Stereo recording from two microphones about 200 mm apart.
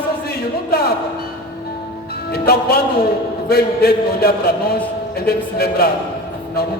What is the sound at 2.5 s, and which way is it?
A man's voice, 50° left (ahead or behind).